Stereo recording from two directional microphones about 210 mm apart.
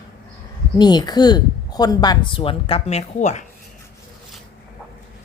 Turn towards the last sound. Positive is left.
turn(degrees=35)  # may be behind; listen again after turning